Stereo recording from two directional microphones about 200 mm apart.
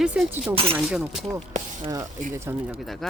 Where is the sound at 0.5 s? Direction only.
30° right (ahead or behind).